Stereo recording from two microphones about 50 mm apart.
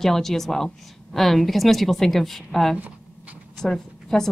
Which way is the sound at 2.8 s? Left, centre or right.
Right.